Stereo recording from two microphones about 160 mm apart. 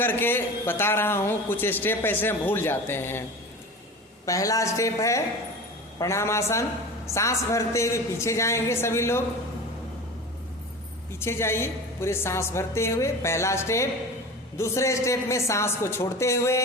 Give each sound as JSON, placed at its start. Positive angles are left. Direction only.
{"t": 0.0, "sound": "a man's voice", "side_deg": 15}
{"t": 4.3, "sound": "a man's voice", "side_deg": 20}
{"t": 11.2, "sound": "a man's voice", "side_deg": 15}